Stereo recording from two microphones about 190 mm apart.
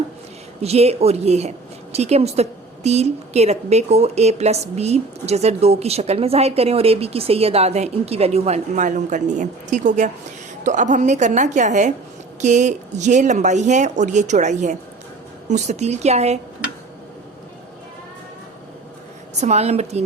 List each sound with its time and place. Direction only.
0.6 s a woman's voice: 35° right (ahead or behind)
19.4 s a woman's voice: 35° right (ahead or behind)